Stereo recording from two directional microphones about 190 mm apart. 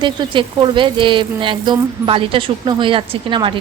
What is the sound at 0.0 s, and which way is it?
Speech, 25° right (ahead or behind).